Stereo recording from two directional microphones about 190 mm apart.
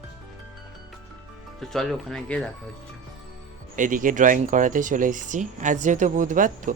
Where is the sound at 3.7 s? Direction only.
45° right (ahead or behind).